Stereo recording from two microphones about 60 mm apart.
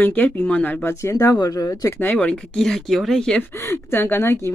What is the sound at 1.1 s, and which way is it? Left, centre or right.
Speech, left.